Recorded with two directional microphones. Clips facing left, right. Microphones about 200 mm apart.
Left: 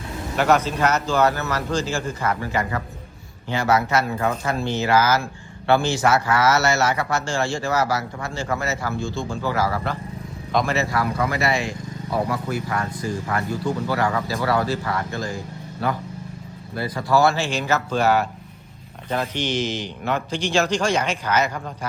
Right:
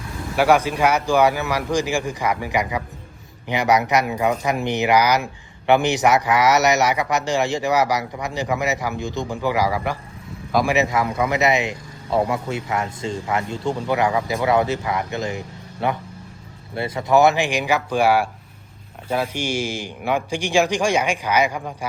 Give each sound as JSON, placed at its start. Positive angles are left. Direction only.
{"t": 0.3, "sound": "a man's voice", "side_deg": -10}
{"t": 10.8, "sound": "speech", "side_deg": -20}